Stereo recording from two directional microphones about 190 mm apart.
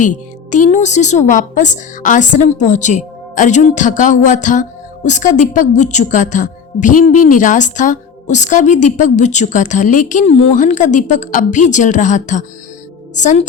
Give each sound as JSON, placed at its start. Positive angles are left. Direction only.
{"t": 0.5, "sound": "a woman's voice", "side_deg": 40}